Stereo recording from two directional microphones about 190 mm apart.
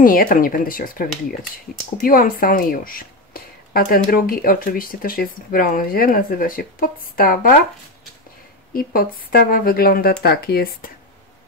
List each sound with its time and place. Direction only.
0.0 s a woman's voice: 45° left (ahead or behind)
8.7 s a woman's voice: 50° left (ahead or behind)